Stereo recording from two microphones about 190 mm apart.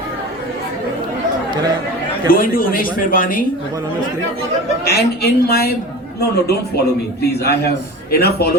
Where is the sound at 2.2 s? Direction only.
50° left (ahead or behind).